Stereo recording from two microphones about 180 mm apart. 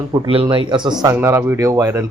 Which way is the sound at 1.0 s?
15° right (ahead or behind).